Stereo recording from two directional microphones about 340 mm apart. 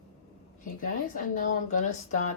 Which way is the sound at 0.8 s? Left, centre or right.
Left.